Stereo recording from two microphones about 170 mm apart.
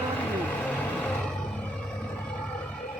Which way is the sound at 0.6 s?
10° left (ahead or behind).